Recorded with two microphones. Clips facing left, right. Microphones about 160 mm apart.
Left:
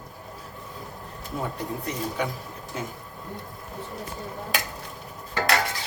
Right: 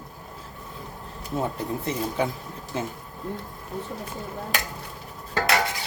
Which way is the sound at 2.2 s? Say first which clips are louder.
Right 3 dB; 30° right (ahead or behind).